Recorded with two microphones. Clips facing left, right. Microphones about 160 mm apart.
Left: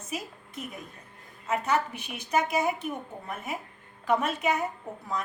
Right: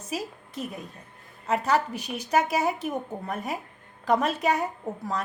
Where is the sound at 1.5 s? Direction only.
35° right (ahead or behind).